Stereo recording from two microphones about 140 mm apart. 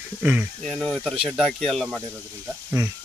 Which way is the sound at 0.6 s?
5° left (ahead or behind).